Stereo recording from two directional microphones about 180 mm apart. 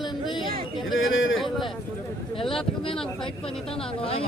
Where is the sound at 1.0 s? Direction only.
90° left.